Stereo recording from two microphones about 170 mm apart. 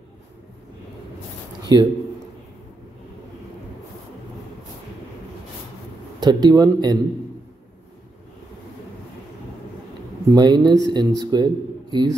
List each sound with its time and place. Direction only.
1.6 s a sound: 25° right (ahead or behind)
6.1 s speech: 25° right (ahead or behind)
10.3 s speech: 25° right (ahead or behind)